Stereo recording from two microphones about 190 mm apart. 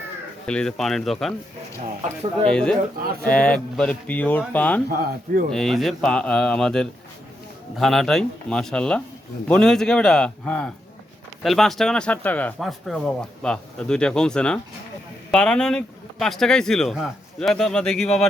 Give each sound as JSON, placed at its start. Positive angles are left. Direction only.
{"t": 0.4, "sound": "speech", "side_deg": 5}
{"t": 2.5, "sound": "speech", "side_deg": 5}
{"t": 4.9, "sound": "speech", "side_deg": -50}
{"t": 5.5, "sound": "speech", "side_deg": 0}